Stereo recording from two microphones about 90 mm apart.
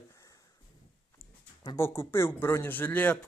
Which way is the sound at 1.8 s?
30° left (ahead or behind).